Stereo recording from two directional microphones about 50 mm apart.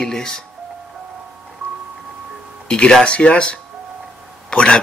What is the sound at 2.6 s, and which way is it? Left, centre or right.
Speech, centre.